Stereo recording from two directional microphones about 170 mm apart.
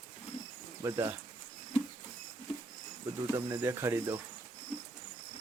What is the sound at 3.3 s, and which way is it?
Speech, 15° right (ahead or behind).